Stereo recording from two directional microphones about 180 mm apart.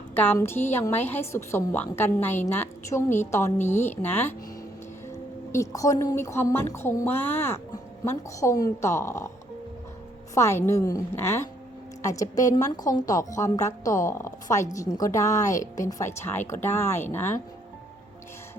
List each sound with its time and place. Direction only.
0.1 s a woman's voice: 10° left (ahead or behind)
10.3 s a woman's voice: 15° left (ahead or behind)